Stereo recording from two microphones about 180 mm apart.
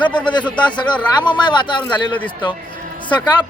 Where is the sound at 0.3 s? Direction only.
25° left (ahead or behind).